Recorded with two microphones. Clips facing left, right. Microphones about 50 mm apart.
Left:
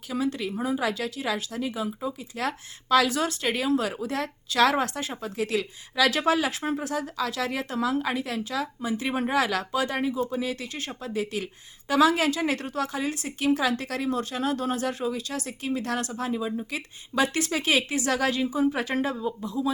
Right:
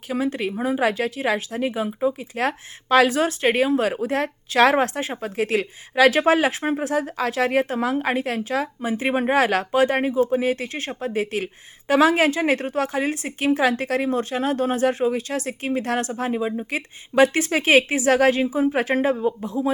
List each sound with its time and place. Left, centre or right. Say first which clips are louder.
0.1 s a woman's voice: right 4 dB; right
19.5 s speech: right 4 dB; right